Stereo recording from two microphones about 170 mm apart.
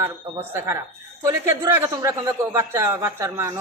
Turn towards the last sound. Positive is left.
turn(degrees=-15)  # may be behind; listen again after turning